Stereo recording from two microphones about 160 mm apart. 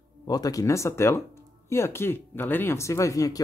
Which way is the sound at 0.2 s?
25° left (ahead or behind).